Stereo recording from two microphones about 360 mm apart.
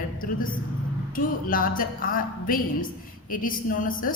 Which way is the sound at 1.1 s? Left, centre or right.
Left.